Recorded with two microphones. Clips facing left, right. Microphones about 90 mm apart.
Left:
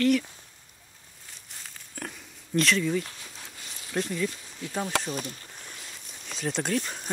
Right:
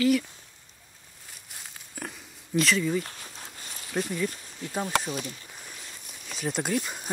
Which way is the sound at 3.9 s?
10° right (ahead or behind).